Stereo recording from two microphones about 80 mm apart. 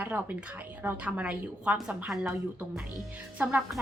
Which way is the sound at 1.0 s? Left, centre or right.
Centre.